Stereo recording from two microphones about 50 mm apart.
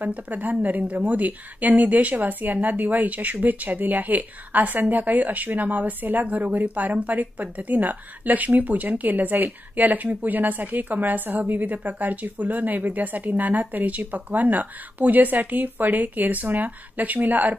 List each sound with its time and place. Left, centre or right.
0.0 s a woman's voice: right